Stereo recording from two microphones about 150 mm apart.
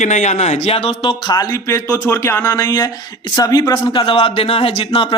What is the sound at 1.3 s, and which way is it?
A man's voice, 20° left (ahead or behind).